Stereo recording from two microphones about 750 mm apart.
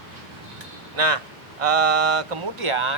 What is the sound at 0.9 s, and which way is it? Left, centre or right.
Speech, right.